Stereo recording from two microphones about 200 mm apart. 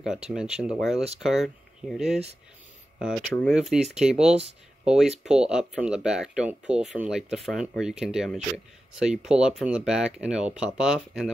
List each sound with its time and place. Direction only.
0.0 s speech: centre (ahead or behind)